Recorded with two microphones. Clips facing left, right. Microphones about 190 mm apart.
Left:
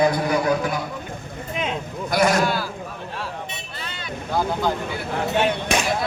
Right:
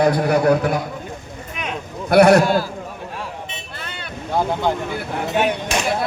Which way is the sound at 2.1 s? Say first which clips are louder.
Right 8 dB; 65° right (ahead or behind).